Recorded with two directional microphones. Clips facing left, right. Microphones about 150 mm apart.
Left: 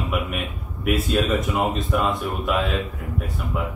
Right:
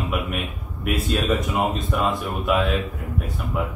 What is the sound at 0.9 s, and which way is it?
Speech, centre (ahead or behind).